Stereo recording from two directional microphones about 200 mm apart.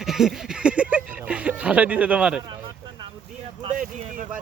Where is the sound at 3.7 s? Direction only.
40° right (ahead or behind).